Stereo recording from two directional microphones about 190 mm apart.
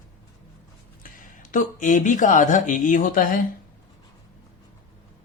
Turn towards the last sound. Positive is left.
turn(degrees=45)  # may be behind; listen again after turning